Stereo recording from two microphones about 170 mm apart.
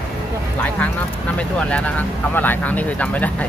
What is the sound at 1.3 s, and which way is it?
Speech, 5° left (ahead or behind).